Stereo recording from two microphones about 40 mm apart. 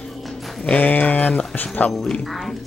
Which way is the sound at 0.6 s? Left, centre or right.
Left.